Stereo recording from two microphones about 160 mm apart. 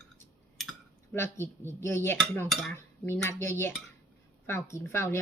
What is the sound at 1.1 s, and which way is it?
Speech, 15° left (ahead or behind).